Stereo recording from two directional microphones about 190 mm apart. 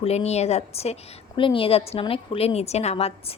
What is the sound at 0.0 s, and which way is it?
Speech, 35° left (ahead or behind).